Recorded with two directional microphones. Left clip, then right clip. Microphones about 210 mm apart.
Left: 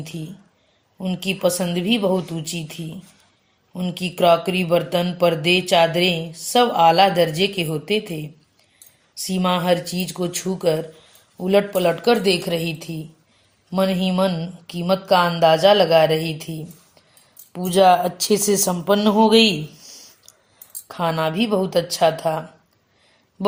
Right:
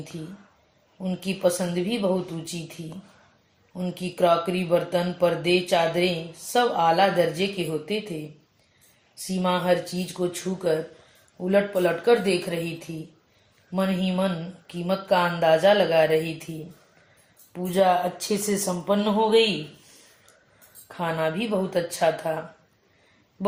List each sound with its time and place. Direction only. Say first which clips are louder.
1.0 s speech: left 3 dB; 50° left (ahead or behind)
9.2 s speech: left 4 dB; 50° left (ahead or behind)
13.7 s speech: left 6 dB; 50° left (ahead or behind)
17.5 s speech: left 6 dB; 50° left (ahead or behind)
20.8 s speech: left 5 dB; 50° left (ahead or behind)